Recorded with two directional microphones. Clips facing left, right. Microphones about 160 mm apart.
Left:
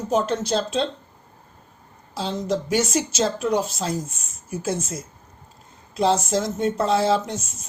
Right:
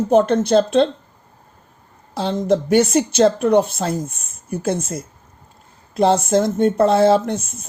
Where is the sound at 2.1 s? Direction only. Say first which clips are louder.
Right 7 dB; 55° right (ahead or behind).